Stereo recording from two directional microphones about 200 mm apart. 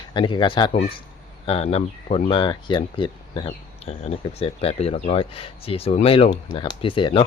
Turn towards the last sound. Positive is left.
turn(degrees=25)  # may be behind; listen again after turning